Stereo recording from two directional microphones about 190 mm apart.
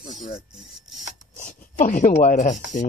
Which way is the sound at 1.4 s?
40° left (ahead or behind).